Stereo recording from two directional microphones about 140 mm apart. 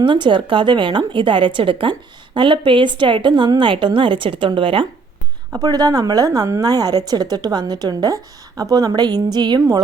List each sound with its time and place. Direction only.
0.0 s a woman's voice: 35° right (ahead or behind)
5.5 s a woman's voice: 25° right (ahead or behind)